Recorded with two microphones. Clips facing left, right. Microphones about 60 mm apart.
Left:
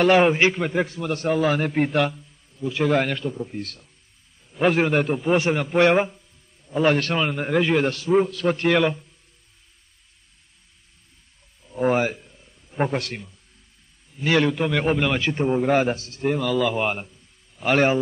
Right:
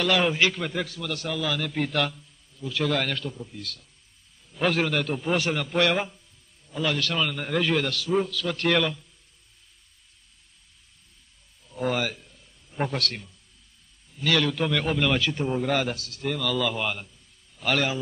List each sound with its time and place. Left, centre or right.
0.0 s a man's voice: left
3.4 s a man's voice: left
4.6 s a man's voice: left
5.1 s a man's voice: centre
6.7 s a man's voice: left
8.5 s a man's voice: centre
11.8 s a sound: left
14.1 s a man's voice: left
16.8 s a man's voice: left